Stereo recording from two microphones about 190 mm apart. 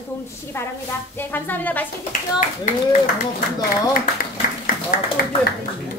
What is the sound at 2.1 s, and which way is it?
Speech, 40° left (ahead or behind).